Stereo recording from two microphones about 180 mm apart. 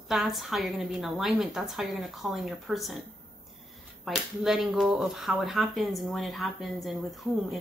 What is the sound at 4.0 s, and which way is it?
Speech, centre (ahead or behind).